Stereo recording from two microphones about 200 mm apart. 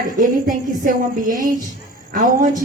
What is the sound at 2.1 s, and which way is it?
Speech, 40° right (ahead or behind).